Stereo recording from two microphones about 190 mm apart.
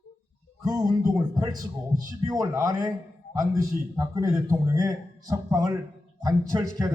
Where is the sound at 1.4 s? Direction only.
20° right (ahead or behind).